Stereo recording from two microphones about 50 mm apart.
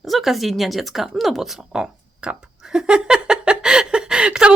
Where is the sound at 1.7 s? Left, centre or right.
Right.